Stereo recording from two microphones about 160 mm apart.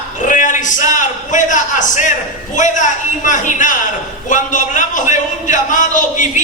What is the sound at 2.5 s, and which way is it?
A man's voice, 50° left (ahead or behind).